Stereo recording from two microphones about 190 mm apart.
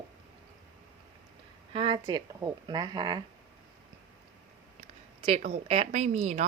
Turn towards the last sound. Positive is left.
turn(degrees=-35)  # may be behind; listen again after turning